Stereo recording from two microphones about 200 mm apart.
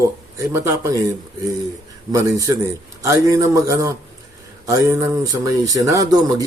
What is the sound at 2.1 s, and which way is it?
Speech, 15° right (ahead or behind).